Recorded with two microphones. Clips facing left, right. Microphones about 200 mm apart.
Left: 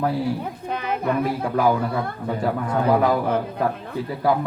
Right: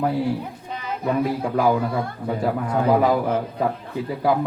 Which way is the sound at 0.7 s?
60° left (ahead or behind).